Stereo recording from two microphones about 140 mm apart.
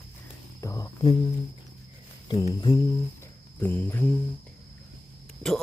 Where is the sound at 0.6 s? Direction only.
25° left (ahead or behind).